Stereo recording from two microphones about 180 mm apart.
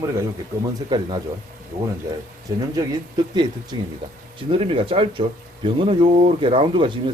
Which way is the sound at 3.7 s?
25° right (ahead or behind).